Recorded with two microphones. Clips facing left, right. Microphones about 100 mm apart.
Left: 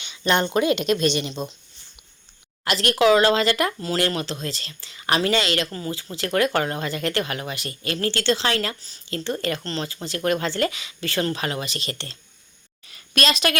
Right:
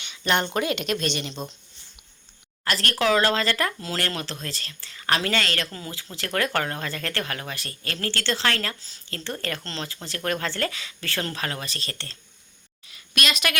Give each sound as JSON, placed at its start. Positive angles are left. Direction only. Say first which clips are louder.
{"t": 0.0, "sound": "speech", "louder": "left 3 dB", "side_deg": 25}
{"t": 2.8, "sound": "speech", "louder": "left 5 dB", "side_deg": 15}
{"t": 4.4, "sound": "speech", "louder": "left 4 dB", "side_deg": -55}
{"t": 4.8, "sound": "speech", "louder": "left 3 dB", "side_deg": 15}
{"t": 8.0, "sound": "speech", "louder": "left 4 dB", "side_deg": -60}
{"t": 8.3, "sound": "speech", "louder": "left 3 dB", "side_deg": 15}
{"t": 11.9, "sound": "speech", "louder": "left 5 dB", "side_deg": 25}
{"t": 12.8, "sound": "a woman's voice", "louder": "left 4 dB", "side_deg": 45}